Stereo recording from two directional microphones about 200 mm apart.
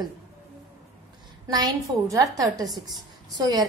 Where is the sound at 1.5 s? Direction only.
20° right (ahead or behind).